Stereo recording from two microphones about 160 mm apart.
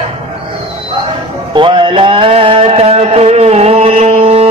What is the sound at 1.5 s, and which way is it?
Music, 30° right (ahead or behind).